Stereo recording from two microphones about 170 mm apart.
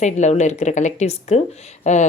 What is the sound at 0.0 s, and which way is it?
Speech, 45° left (ahead or behind).